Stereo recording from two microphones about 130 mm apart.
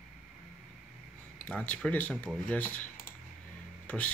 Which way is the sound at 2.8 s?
85° left.